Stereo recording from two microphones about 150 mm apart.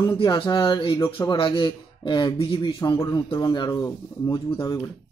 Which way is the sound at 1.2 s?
35° left (ahead or behind).